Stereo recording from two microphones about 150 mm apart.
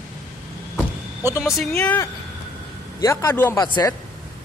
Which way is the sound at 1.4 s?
5° left (ahead or behind).